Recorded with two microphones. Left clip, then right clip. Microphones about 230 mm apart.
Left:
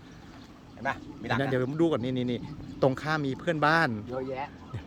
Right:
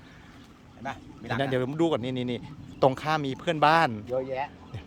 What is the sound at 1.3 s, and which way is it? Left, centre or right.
A man's voice, centre.